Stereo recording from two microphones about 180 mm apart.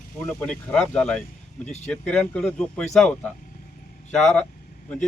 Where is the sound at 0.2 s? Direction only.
5° left (ahead or behind).